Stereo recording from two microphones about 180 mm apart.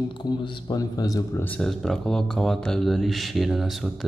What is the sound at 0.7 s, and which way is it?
Speech, 20° left (ahead or behind).